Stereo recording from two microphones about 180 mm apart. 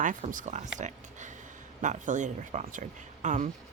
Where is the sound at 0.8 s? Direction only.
45° right (ahead or behind).